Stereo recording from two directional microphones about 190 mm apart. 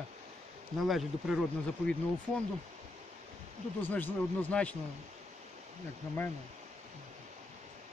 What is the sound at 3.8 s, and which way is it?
Speech, 10° left (ahead or behind).